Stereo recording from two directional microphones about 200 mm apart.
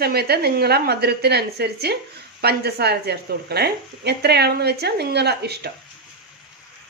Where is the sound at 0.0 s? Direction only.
50° right (ahead or behind).